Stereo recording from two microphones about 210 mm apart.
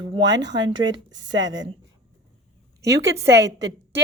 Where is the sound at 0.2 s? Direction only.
55° right (ahead or behind).